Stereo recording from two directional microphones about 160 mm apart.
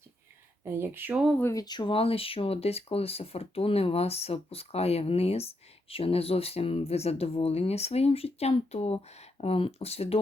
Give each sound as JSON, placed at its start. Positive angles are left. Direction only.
{"t": 0.6, "sound": "speech", "side_deg": -15}
{"t": 1.4, "sound": "speech", "side_deg": 20}